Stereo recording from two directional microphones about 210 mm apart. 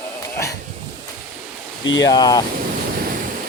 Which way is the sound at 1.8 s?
60° left (ahead or behind).